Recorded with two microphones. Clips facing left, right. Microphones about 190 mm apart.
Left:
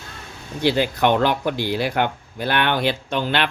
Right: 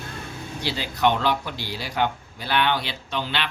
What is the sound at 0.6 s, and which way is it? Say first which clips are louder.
Speech: left 5 dB; 55° left (ahead or behind).